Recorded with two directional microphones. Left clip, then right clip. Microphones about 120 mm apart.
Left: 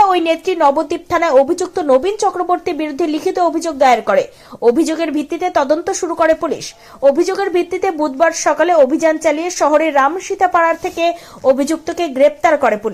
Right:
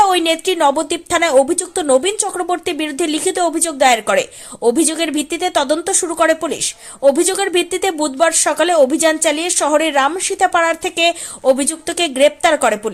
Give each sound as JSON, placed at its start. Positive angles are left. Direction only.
{"t": 0.0, "sound": "speech", "side_deg": -15}
{"t": 8.2, "sound": "speech", "side_deg": -20}